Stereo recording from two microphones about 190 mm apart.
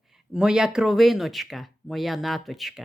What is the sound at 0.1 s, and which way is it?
Speech, 5° right (ahead or behind).